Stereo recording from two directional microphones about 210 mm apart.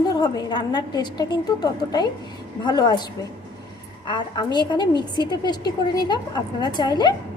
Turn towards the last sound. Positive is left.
turn(degrees=20)  # may be behind; listen again after turning